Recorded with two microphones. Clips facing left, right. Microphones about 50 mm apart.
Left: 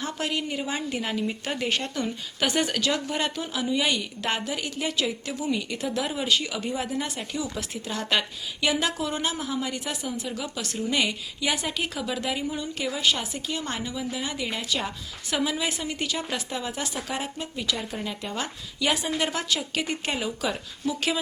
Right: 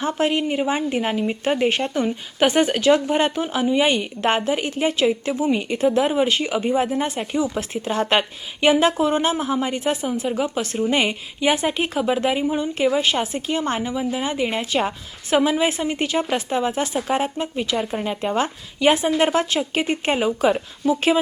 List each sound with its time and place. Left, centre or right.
0.0 s a woman's voice: right